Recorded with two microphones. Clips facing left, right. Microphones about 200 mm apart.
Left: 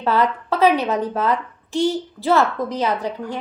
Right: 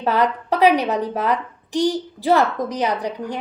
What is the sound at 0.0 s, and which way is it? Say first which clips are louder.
A woman's voice: even; 15° right (ahead or behind).